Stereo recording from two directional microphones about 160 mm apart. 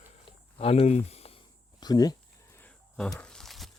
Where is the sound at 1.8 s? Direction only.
25° left (ahead or behind).